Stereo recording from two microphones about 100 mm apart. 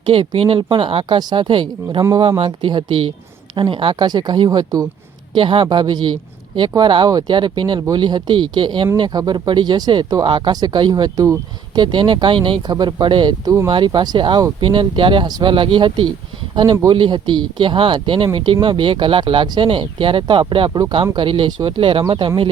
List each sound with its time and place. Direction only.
0.0 s speech: 65° right (ahead or behind); by 4.9 s 40° right (ahead or behind)
5.3 s speech: 55° right (ahead or behind)
13.4 s speech: 35° right (ahead or behind)
13.7 s speech: 50° right (ahead or behind)
20.7 s speech: 40° right (ahead or behind)
21.2 s speech: 60° right (ahead or behind)